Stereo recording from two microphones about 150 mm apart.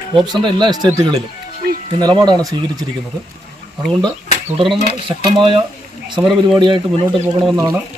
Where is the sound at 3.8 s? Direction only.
5° left (ahead or behind).